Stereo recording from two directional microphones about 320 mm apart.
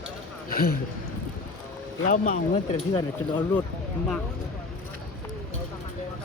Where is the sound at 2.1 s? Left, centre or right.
Left.